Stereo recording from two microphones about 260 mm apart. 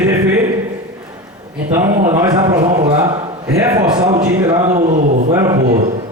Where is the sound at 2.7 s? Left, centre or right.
Right.